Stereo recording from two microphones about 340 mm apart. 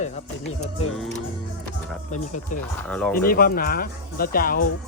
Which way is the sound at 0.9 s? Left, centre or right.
Centre.